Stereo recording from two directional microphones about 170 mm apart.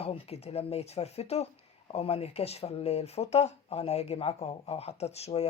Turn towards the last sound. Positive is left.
turn(degrees=40)  # may be behind; listen again after turning